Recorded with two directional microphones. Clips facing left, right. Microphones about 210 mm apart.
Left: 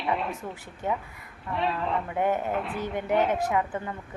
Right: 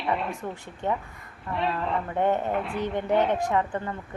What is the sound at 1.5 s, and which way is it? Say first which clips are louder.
Speech: even; centre (ahead or behind).